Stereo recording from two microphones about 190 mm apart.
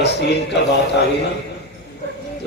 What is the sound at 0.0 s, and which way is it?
Speech, 65° left (ahead or behind).